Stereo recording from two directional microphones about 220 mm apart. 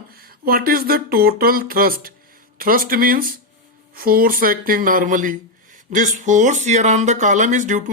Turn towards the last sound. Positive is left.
turn(degrees=-35)  # may be behind; listen again after turning